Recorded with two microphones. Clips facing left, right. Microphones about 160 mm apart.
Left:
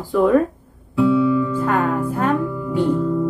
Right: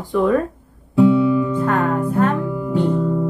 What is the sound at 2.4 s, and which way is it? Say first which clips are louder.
Music: right 2 dB; 20° right (ahead or behind).